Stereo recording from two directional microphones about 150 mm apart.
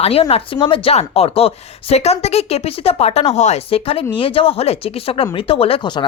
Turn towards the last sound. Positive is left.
turn(degrees=30)  # may be behind; listen again after turning